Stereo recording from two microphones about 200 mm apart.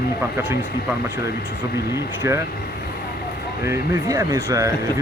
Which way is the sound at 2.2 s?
15° right (ahead or behind).